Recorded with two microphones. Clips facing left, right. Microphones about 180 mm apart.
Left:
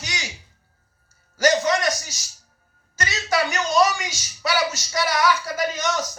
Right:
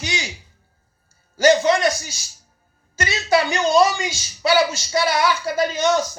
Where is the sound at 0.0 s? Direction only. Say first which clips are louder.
Right 6 dB; 30° right (ahead or behind).